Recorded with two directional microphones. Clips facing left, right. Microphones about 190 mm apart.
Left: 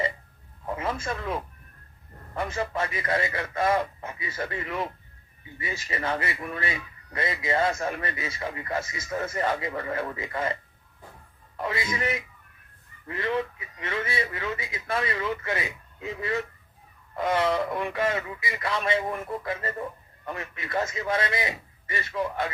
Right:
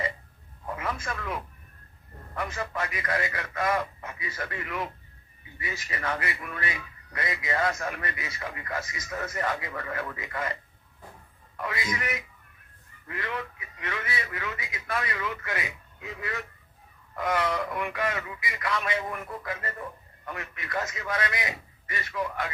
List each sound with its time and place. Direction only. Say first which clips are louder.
0.8 s a man's voice: left 3 dB; 25° left (ahead or behind)